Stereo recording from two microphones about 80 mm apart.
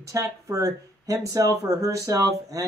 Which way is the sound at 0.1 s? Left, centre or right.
Right.